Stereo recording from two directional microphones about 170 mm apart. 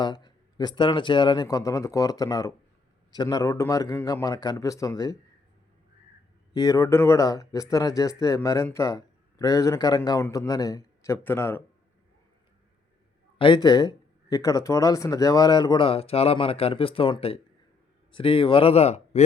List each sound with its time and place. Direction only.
0.0 s speech: 25° left (ahead or behind)
6.5 s speech: 25° left (ahead or behind)
13.4 s speech: 25° left (ahead or behind)